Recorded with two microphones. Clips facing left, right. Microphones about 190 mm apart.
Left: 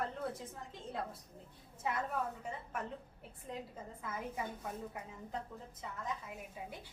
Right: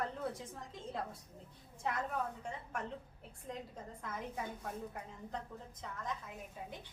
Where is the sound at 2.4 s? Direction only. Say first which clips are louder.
Even; 5° left (ahead or behind).